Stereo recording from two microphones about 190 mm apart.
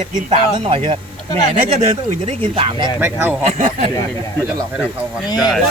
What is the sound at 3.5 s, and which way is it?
Speech, 40° right (ahead or behind).